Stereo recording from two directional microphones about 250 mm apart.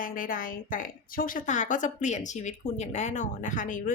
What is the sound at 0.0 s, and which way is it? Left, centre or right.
A woman's voice, left.